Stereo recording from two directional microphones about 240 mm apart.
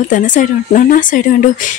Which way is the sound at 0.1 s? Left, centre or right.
Left.